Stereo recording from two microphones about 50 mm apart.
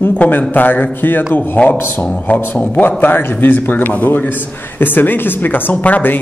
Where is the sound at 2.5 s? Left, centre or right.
Left.